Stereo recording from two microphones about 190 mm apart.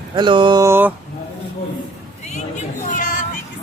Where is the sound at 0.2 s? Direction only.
25° right (ahead or behind).